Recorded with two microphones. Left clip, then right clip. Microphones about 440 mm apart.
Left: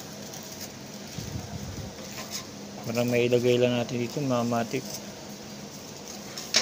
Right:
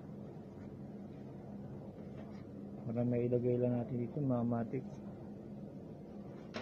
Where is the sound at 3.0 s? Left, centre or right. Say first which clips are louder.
Left 12 dB; right.